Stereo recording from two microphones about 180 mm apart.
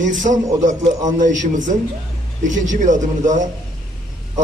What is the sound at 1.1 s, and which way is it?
A man's voice, 45° right (ahead or behind).